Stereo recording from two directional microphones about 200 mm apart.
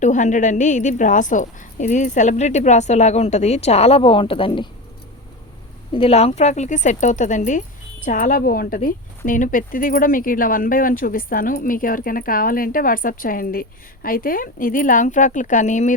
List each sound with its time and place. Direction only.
0.0 s a woman's voice: 40° left (ahead or behind)
5.9 s a woman's voice: 30° left (ahead or behind)